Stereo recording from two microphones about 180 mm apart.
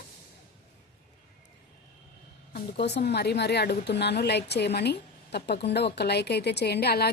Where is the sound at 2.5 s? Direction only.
70° left (ahead or behind).